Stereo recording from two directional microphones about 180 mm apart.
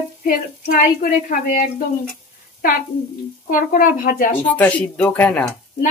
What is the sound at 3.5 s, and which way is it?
Speech, 50° left (ahead or behind).